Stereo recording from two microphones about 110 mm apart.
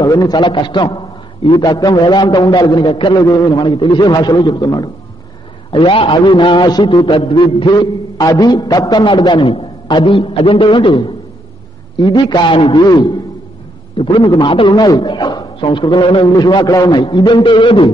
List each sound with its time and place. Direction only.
0.0 s a man's voice: 35° left (ahead or behind)
3.3 s a man's voice: 35° left (ahead or behind)
5.7 s a man's voice: 50° left (ahead or behind)
7.1 s a man's voice: 55° left (ahead or behind)
12.8 s a man's voice: 40° left (ahead or behind)